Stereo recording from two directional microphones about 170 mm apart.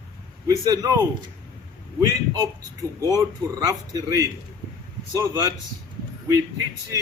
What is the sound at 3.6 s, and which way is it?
Speech, 20° right (ahead or behind).